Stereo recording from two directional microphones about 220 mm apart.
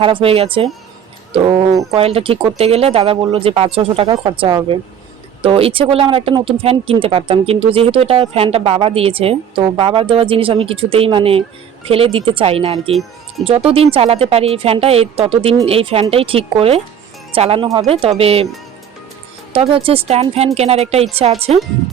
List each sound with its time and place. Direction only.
0.0 s speech: 25° right (ahead or behind)
12.9 s speech: centre (ahead or behind)
13.4 s speech: 25° right (ahead or behind)
19.5 s speech: 25° right (ahead or behind)